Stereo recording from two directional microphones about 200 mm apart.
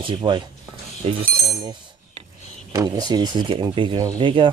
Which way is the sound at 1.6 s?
25° right (ahead or behind).